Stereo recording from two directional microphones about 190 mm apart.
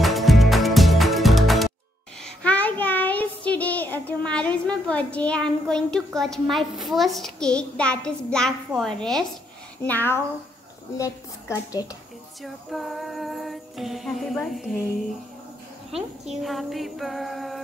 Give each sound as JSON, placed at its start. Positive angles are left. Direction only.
{"t": 0.0, "sound": "music", "side_deg": 0}
{"t": 2.2, "sound": "child singing", "side_deg": 5}
{"t": 4.6, "sound": "a woman's voice", "side_deg": 5}
{"t": 12.4, "sound": "a child's voice", "side_deg": 0}